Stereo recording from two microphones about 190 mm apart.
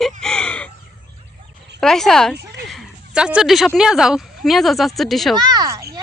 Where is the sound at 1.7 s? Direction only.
Centre (ahead or behind).